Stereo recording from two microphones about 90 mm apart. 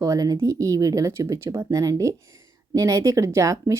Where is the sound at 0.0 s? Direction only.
40° right (ahead or behind).